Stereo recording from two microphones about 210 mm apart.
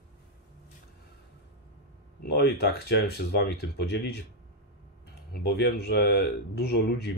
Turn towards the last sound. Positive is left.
turn(degrees=50)  # may be behind; listen again after turning